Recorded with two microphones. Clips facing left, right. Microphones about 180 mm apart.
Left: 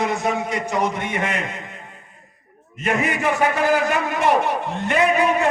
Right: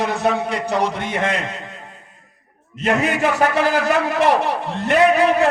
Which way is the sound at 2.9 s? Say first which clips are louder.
Right 3 dB; 80° right.